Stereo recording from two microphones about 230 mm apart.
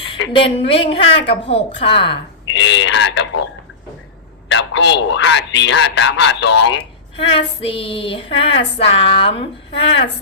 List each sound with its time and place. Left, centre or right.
0.3 s child singing: left
2.5 s speech: left
4.4 s a man's voice: left
7.3 s child singing: left